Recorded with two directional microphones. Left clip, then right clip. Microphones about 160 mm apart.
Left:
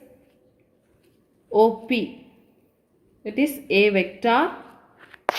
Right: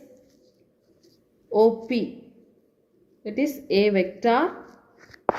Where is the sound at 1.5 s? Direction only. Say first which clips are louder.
Left 1 dB; 55° left (ahead or behind).